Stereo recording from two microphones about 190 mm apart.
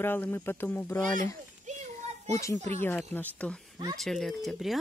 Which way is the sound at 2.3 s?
15° left (ahead or behind).